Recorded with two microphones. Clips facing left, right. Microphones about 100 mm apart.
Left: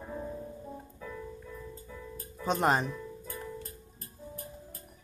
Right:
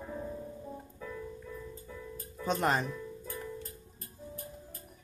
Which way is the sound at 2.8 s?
5° left (ahead or behind).